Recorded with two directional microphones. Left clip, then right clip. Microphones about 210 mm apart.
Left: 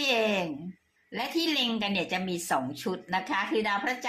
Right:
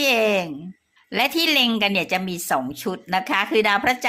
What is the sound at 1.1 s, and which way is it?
A woman's voice, 35° right (ahead or behind).